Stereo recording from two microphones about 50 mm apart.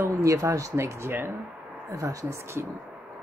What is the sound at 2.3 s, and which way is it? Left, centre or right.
Speech, right.